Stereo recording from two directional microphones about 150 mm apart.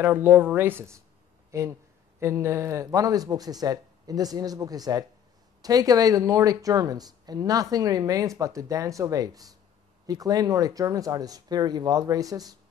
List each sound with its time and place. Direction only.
0.0 s speech: 15° right (ahead or behind)